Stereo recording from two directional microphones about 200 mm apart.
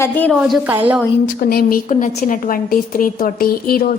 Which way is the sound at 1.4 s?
50° left (ahead or behind).